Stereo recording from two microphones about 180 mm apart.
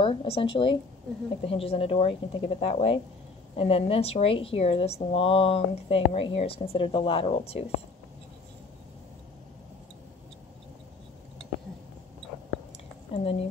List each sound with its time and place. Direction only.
0.0 s a woman's voice: 30° left (ahead or behind)
13.1 s speech: 30° left (ahead or behind)